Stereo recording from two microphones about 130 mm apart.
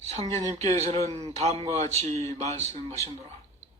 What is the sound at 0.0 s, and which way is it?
A man's voice, 55° right (ahead or behind).